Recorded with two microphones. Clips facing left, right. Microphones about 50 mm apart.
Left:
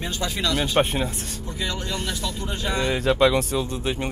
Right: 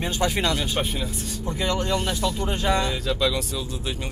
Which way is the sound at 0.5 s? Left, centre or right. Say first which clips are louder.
Left 5 dB; left.